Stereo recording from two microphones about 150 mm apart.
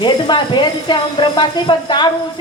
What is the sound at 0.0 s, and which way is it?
A woman's voice, 30° left (ahead or behind).